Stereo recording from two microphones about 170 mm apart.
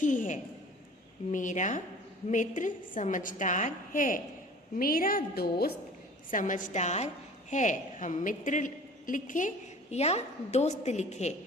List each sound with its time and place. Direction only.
0.0 s a woman's voice: 50° left (ahead or behind); by 5.7 s 65° left (ahead or behind)
6.3 s a woman's voice: 50° left (ahead or behind)